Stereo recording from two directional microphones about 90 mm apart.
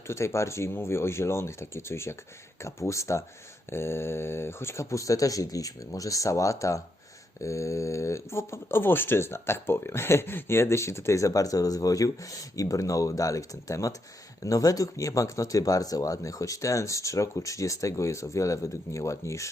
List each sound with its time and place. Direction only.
0.1 s speech: 30° left (ahead or behind)